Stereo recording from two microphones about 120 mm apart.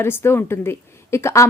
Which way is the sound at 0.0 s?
20° left (ahead or behind).